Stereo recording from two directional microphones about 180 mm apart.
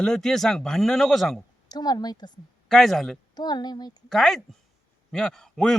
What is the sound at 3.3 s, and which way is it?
Speech, 25° left (ahead or behind).